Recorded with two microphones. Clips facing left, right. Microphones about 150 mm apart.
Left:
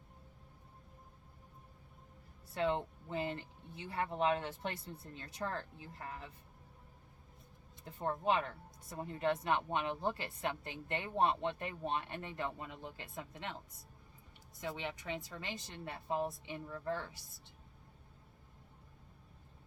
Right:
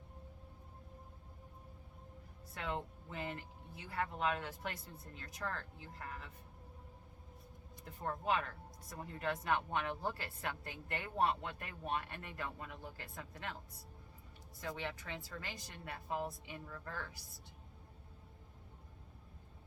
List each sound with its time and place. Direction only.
2.6 s speech: 25° left (ahead or behind)
7.9 s speech: 25° left (ahead or behind)
14.6 s speech: 20° left (ahead or behind)